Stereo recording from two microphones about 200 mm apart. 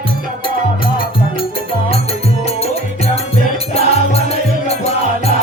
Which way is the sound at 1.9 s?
30° left (ahead or behind).